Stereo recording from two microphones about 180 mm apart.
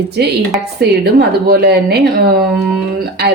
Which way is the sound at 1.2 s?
60° right (ahead or behind).